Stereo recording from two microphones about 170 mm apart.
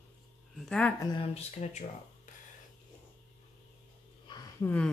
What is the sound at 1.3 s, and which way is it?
Speech, 40° left (ahead or behind).